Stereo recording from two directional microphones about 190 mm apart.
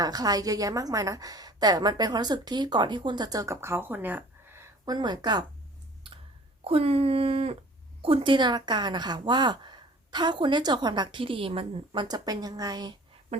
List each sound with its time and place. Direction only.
0.0 s a woman's voice: 20° right (ahead or behind)
6.7 s a woman's voice: 30° right (ahead or behind)